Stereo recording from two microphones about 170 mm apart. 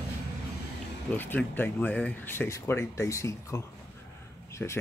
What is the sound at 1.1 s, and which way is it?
Speech, 10° left (ahead or behind).